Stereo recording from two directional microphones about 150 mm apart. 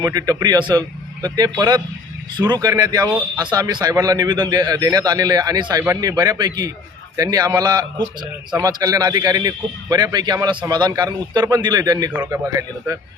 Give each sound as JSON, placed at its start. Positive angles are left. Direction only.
{"t": 0.0, "sound": "a man's voice", "side_deg": -25}